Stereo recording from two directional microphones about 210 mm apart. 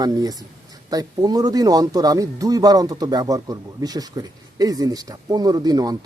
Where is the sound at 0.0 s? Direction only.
15° right (ahead or behind).